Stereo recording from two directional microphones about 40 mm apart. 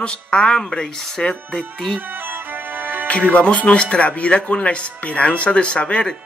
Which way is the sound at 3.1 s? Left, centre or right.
Left.